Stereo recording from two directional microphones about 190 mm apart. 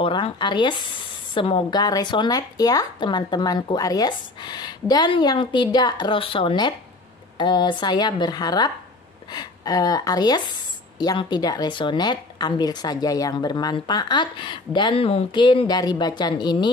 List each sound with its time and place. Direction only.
0.0 s speech: 25° left (ahead or behind)